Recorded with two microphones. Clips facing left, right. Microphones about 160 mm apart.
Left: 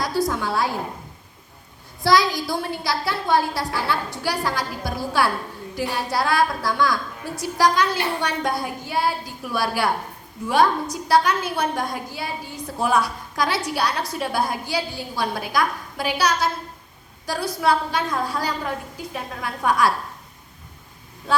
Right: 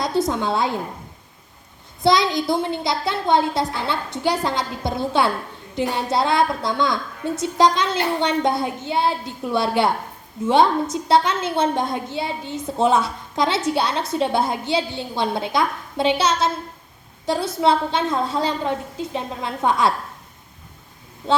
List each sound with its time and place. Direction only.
0.0 s a woman's voice: 20° right (ahead or behind)
2.0 s a woman's voice: 20° right (ahead or behind)
21.2 s a woman's voice: 20° right (ahead or behind)